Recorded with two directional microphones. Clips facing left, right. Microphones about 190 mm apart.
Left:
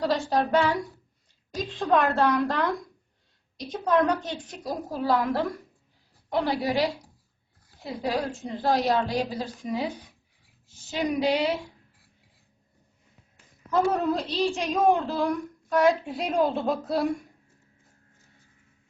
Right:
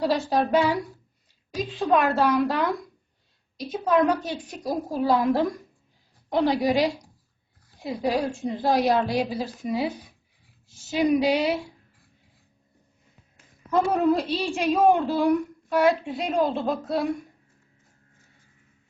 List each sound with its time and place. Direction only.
0.0 s a woman's voice: 10° right (ahead or behind)
13.7 s a woman's voice: 10° right (ahead or behind)